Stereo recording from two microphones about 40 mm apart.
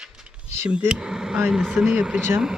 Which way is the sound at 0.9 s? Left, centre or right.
Right.